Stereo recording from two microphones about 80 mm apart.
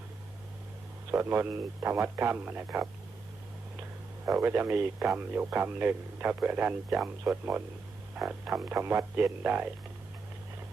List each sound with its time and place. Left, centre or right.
1.1 s speech: right
4.4 s speech: right
8.5 s speech: right